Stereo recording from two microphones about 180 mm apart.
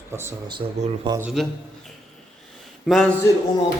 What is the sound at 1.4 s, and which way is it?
Speech, centre (ahead or behind).